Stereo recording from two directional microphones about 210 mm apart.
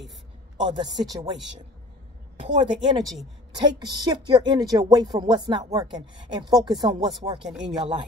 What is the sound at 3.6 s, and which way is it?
Speech, 20° right (ahead or behind).